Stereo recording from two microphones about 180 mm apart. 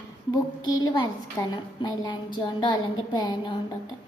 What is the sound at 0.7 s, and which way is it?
A woman's voice, 20° left (ahead or behind).